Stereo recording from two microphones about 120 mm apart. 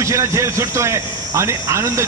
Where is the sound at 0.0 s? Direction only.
25° right (ahead or behind).